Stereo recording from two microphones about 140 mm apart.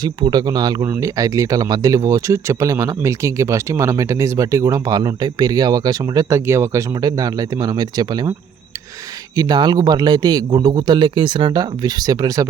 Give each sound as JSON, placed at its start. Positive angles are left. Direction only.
{"t": 0.0, "sound": "speech", "side_deg": -30}